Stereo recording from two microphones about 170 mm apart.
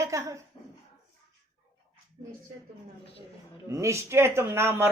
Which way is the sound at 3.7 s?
15° right (ahead or behind).